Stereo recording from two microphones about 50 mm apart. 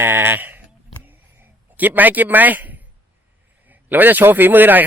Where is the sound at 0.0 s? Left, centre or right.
Right.